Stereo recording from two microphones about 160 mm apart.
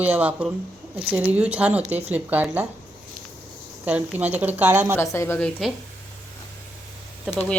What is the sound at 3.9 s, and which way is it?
A woman's voice, 10° right (ahead or behind).